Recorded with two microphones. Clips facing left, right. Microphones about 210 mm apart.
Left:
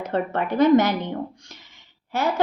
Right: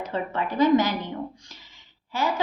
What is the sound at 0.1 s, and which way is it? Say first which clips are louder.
Speech: left 6 dB; 55° left (ahead or behind).